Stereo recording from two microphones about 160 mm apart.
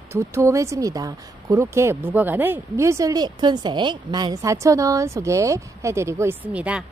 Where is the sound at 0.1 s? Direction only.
15° right (ahead or behind).